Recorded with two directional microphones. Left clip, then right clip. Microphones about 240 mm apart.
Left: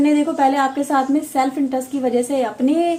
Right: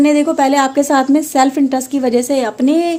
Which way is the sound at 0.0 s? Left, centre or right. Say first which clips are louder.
Right 4 dB; right.